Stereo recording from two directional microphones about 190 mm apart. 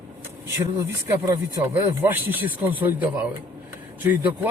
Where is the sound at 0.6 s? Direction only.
15° right (ahead or behind).